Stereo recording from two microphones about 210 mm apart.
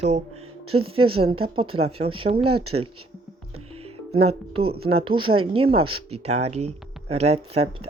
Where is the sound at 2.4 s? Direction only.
90° right.